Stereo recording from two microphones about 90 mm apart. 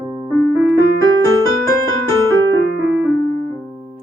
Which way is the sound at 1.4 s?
35° left (ahead or behind).